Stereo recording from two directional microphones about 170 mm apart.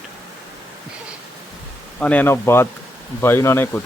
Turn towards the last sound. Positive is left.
turn(degrees=15)  # may be behind; listen again after turning